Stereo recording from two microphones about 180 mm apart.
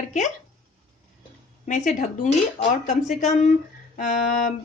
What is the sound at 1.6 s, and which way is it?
Speech, 45° left (ahead or behind).